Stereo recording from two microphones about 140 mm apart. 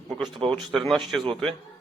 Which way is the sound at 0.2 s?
30° right (ahead or behind).